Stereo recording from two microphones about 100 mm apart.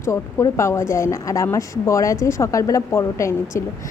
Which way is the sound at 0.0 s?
30° left (ahead or behind).